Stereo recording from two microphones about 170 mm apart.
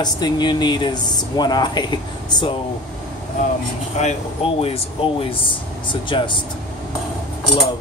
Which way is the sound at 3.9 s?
40° left (ahead or behind).